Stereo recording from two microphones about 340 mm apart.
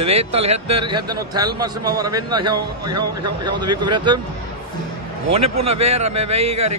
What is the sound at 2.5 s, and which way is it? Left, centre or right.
Speech, right.